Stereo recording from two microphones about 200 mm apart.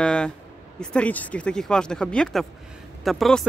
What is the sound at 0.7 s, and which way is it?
Speech, 5° left (ahead or behind).